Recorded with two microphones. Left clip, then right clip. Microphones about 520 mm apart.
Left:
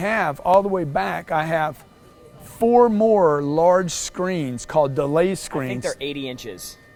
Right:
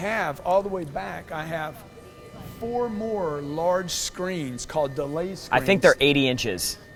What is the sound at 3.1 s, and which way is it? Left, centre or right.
Speech, left.